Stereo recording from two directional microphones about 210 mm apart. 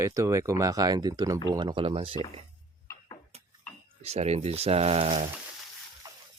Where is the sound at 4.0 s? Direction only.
30° right (ahead or behind).